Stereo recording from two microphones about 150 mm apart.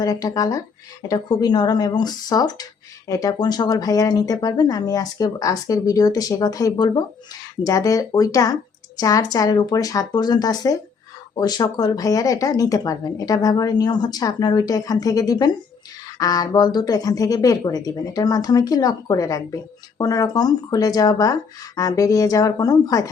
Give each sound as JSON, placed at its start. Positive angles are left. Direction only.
{"t": 0.0, "sound": "speech", "side_deg": 25}